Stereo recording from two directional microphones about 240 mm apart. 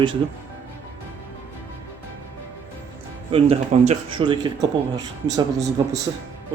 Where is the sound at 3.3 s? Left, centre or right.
Right.